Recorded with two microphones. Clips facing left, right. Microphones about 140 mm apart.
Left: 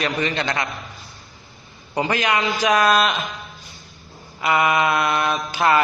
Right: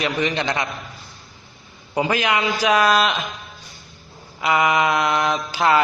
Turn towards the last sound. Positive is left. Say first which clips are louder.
# even
turn(degrees=-15)  # may be behind; listen again after turning